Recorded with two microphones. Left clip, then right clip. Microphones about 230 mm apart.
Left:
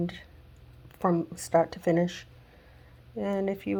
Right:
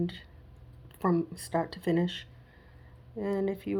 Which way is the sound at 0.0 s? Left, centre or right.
Left.